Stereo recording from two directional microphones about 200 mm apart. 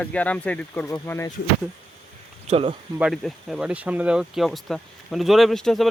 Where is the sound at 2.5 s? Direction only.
30° right (ahead or behind).